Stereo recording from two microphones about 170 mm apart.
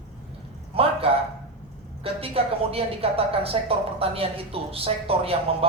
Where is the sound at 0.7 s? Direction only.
35° right (ahead or behind).